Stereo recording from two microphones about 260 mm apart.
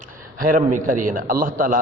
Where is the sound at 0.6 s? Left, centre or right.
Right.